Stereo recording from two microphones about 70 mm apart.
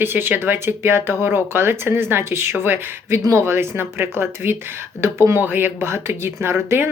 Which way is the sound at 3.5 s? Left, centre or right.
Right.